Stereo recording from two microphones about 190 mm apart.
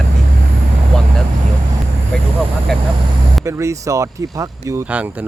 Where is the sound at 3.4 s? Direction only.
15° right (ahead or behind).